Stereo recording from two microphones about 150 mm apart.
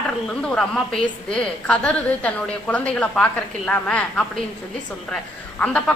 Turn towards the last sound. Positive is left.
turn(degrees=5)  # may be behind; listen again after turning